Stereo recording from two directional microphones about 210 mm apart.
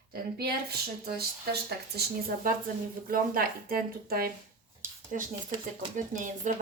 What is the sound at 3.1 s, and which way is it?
Speech, 45° right (ahead or behind).